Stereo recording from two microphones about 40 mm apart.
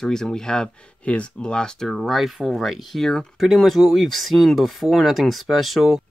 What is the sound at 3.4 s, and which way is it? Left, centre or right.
Speech, centre.